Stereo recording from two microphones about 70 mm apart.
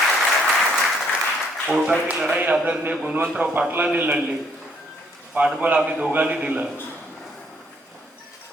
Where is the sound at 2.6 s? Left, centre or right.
Right.